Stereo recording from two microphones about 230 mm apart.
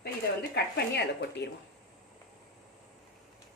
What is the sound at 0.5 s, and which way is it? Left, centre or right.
Speech, left.